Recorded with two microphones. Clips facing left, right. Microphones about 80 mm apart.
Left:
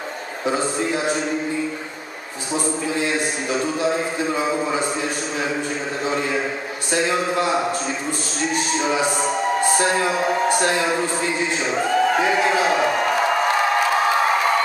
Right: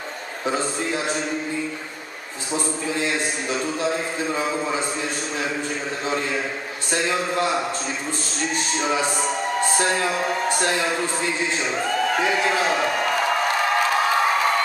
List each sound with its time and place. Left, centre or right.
0.5 s a man's voice: centre
2.5 s a man's voice: centre
6.0 s a man's voice: centre
8.8 s a man's voice: centre